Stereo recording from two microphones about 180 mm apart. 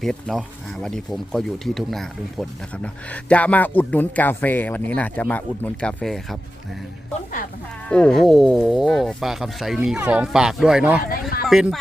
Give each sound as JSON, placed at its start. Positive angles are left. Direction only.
{"t": 0.0, "sound": "speech", "side_deg": 0}
{"t": 7.9, "sound": "speech", "side_deg": 5}
{"t": 11.1, "sound": "a sound", "side_deg": 55}
{"t": 11.4, "sound": "speech", "side_deg": 0}